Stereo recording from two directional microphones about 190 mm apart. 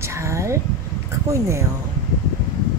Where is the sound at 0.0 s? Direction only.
15° right (ahead or behind).